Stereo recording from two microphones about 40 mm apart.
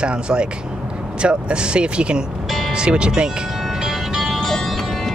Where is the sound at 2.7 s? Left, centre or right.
Right.